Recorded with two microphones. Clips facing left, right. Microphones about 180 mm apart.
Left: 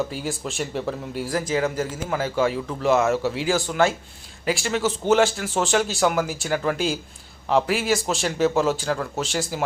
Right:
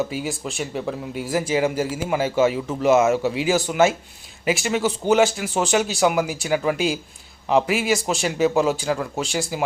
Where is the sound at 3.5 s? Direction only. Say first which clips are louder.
Right 3 dB; 20° right (ahead or behind).